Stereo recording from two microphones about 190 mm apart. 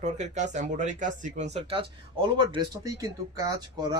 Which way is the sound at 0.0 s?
40° right (ahead or behind).